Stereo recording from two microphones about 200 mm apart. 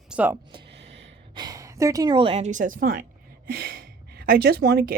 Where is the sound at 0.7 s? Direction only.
60° right (ahead or behind).